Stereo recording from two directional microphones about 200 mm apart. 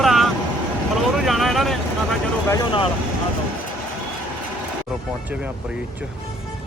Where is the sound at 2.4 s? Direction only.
15° left (ahead or behind).